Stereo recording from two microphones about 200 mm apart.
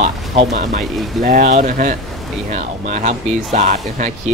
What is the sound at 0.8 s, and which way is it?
Speech, centre (ahead or behind).